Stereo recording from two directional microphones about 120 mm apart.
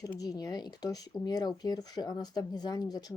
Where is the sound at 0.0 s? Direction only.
30° left (ahead or behind).